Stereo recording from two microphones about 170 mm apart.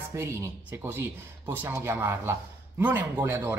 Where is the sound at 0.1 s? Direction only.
15° right (ahead or behind).